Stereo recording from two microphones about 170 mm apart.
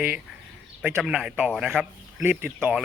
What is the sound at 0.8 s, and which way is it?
Speech, 5° right (ahead or behind).